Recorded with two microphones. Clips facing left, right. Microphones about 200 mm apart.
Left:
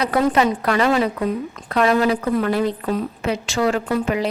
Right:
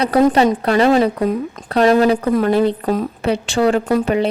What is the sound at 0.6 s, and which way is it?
A woman's voice, 30° right (ahead or behind).